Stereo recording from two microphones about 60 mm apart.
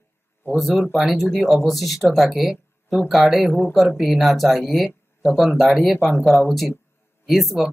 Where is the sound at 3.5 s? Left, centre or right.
Left.